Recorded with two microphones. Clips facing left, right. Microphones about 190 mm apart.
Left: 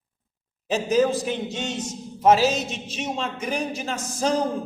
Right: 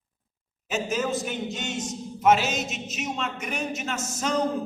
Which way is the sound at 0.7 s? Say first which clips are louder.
Left 6 dB; 35° left (ahead or behind).